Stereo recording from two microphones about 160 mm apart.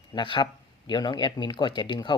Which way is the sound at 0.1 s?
30° left (ahead or behind).